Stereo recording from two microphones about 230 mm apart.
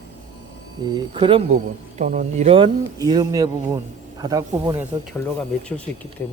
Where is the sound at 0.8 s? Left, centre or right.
Centre.